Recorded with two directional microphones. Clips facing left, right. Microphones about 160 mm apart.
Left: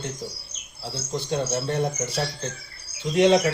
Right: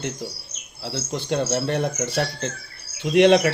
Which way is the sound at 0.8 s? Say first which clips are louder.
Right 2 dB; 75° right (ahead or behind).